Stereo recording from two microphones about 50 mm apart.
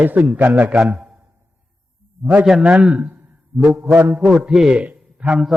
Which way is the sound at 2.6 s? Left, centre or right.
Right.